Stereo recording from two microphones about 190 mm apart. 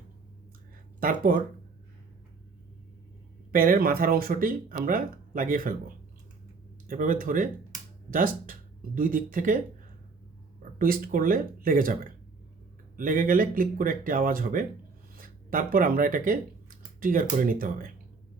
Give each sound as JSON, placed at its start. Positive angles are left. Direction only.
{"t": 0.9, "sound": "speech", "side_deg": -50}
{"t": 3.5, "sound": "speech", "side_deg": -45}
{"t": 6.8, "sound": "speech", "side_deg": -45}
{"t": 10.8, "sound": "speech", "side_deg": -50}
{"t": 13.0, "sound": "speech", "side_deg": -45}